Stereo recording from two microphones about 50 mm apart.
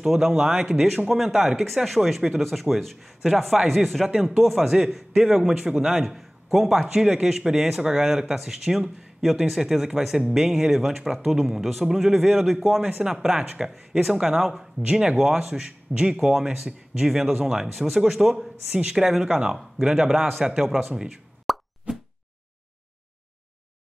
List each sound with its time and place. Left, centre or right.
0.0 s speech: centre
4.1 s speech: centre
18.7 s speech: centre
21.5 s plop: centre
21.9 s a sound: centre